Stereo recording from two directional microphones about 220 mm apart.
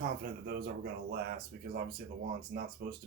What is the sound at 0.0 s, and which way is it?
Speech, 45° right (ahead or behind).